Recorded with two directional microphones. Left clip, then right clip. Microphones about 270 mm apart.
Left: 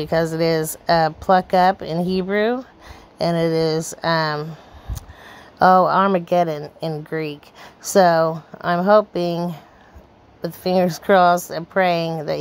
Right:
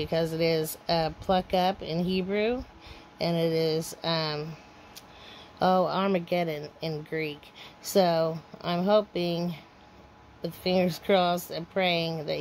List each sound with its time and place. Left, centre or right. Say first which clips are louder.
0.0 s a woman's voice: left 8 dB; left
5.6 s a woman's voice: left 11 dB; left
7.8 s a woman's voice: left 9 dB; left